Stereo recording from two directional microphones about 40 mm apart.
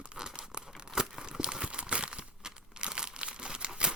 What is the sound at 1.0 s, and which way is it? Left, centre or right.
Crumpling, centre.